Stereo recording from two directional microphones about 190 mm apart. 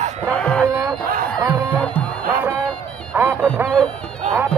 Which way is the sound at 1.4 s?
10° right (ahead or behind).